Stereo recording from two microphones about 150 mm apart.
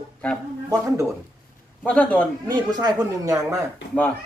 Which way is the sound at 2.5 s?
25° right (ahead or behind).